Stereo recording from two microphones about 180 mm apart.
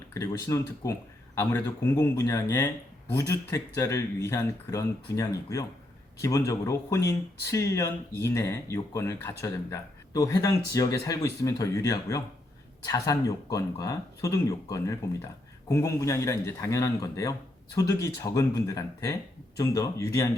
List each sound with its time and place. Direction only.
0.1 s a man's voice: 15° left (ahead or behind)